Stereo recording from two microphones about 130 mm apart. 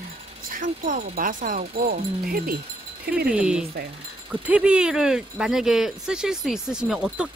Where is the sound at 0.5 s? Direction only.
85° right.